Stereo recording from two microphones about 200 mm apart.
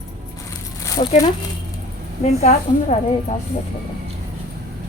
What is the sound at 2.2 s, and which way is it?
Speech, 35° left (ahead or behind).